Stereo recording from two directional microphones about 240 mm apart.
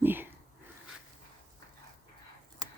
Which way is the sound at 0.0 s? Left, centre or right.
Centre.